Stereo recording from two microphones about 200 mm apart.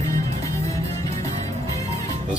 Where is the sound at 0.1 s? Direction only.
15° left (ahead or behind).